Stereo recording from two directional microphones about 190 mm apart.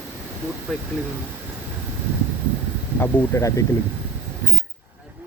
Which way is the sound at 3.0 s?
15° left (ahead or behind).